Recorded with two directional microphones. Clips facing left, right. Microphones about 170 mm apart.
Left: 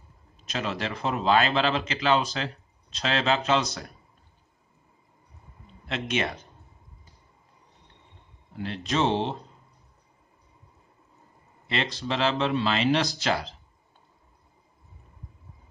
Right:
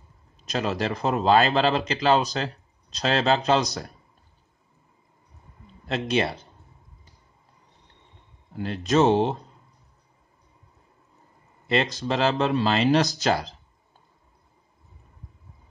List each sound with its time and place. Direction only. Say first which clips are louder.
0.4 s a man's voice: right 4 dB; 40° right (ahead or behind)
5.9 s a man's voice: right 4 dB; 35° right (ahead or behind)
8.5 s speech: right 6 dB; 40° right (ahead or behind)
11.6 s a man's voice: right 6 dB; 40° right (ahead or behind)